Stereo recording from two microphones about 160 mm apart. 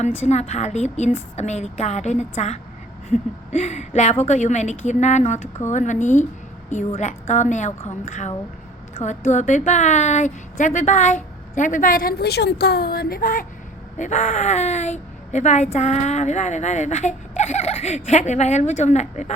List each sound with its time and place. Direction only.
0.0 s speech: 45° left (ahead or behind); by 13.4 s 65° left (ahead or behind)
13.9 s speech: 50° left (ahead or behind)